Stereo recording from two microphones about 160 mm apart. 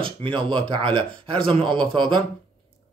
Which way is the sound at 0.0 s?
30° right (ahead or behind).